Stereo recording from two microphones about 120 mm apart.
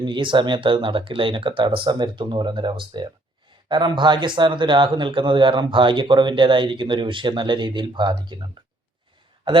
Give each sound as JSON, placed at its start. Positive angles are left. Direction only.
{"t": 0.0, "sound": "speech", "side_deg": -40}